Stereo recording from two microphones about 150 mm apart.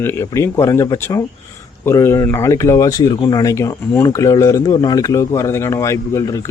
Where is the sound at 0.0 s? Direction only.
15° left (ahead or behind).